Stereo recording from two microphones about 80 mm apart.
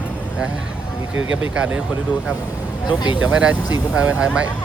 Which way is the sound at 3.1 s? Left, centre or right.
Centre.